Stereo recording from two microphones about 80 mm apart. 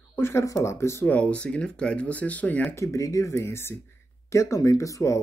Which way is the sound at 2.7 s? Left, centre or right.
Left.